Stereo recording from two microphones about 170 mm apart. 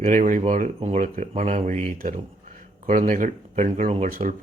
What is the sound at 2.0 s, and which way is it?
Speech, 55° right (ahead or behind).